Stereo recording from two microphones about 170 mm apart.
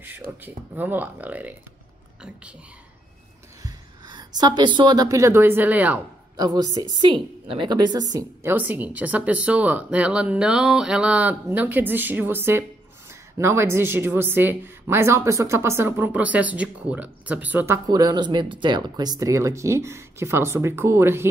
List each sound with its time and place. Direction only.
0.4 s a woman's voice: 10° right (ahead or behind)
3.6 s speech: 25° right (ahead or behind)
6.3 s a woman's voice: 25° right (ahead or behind)
17.8 s a woman's voice: 25° right (ahead or behind)